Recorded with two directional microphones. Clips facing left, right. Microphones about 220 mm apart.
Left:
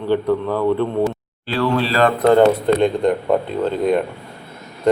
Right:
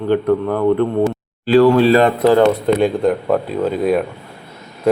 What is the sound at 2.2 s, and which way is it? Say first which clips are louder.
A man's voice: right 1 dB; 5° right (ahead or behind).